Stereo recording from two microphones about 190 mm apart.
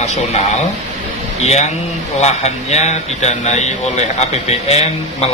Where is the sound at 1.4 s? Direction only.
35° left (ahead or behind).